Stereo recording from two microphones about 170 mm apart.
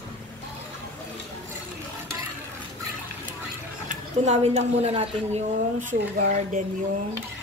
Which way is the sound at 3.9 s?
40° right (ahead or behind).